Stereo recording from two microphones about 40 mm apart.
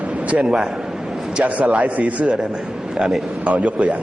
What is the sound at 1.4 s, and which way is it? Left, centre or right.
Speech, right.